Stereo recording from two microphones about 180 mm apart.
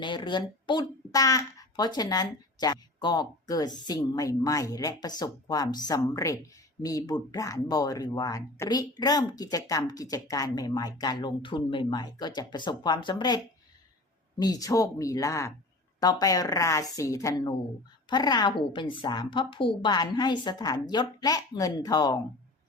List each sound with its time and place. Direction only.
0.0 s speech: 25° left (ahead or behind)